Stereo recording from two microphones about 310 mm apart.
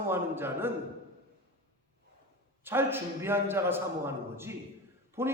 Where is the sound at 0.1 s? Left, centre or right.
Centre.